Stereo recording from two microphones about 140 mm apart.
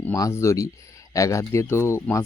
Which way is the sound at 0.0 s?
20° left (ahead or behind).